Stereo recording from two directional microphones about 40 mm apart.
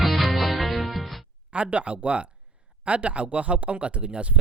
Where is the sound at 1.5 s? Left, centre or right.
Right.